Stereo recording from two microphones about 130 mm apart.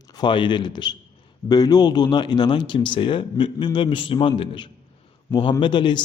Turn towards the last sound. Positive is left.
turn(degrees=35)  # may be behind; listen again after turning